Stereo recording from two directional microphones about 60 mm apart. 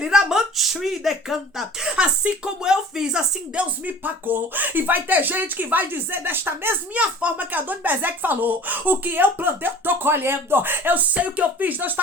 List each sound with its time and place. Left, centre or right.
0.0 s speech: centre
2.0 s speech: centre; by 6.7 s right
6.9 s speech: right